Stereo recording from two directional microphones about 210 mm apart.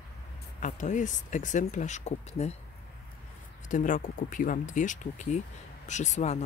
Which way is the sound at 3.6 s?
40° left (ahead or behind).